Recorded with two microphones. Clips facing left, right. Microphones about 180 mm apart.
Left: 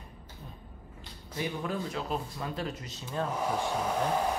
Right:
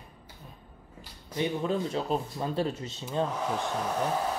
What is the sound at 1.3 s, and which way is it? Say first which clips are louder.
Speech: right 5 dB; 25° right (ahead or behind).